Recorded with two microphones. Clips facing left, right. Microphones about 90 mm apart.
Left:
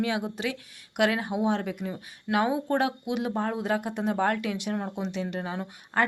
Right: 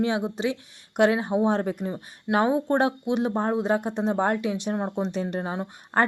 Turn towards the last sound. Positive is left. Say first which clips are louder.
# right 3 dB
turn(degrees=-40)  # may be behind; listen again after turning